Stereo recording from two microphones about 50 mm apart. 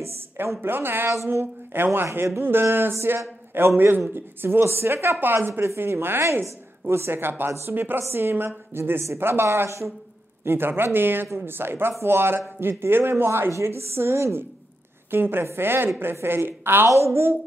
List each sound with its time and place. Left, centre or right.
0.4 s speech: right
1.1 s a woman's voice: right
1.4 s speech: right
5.5 s a woman's voice: right
5.8 s speech: right
15.0 s speech: right
16.9 s a woman's voice: right